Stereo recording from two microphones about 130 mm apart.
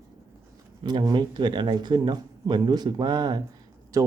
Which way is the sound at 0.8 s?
30° right (ahead or behind).